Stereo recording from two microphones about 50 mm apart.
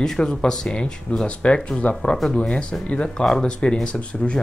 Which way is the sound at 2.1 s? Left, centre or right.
Centre.